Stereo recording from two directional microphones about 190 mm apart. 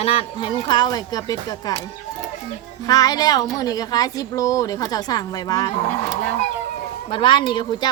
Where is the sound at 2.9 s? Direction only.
20° left (ahead or behind).